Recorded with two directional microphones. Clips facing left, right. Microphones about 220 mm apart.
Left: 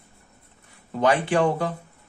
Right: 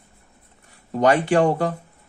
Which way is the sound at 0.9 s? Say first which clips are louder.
Right 3 dB; 45° right (ahead or behind).